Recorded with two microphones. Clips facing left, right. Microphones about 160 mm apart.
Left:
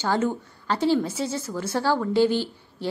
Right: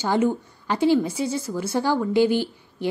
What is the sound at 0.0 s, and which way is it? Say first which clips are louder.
A woman's voice: right 3 dB; 15° right (ahead or behind).